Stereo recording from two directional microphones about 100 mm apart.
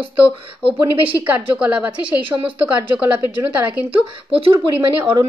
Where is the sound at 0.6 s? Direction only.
65° right (ahead or behind).